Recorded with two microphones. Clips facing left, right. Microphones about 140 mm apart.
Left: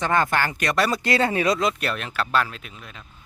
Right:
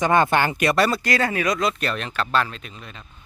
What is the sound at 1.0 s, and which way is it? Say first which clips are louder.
Speech: left 1 dB; 25° left (ahead or behind).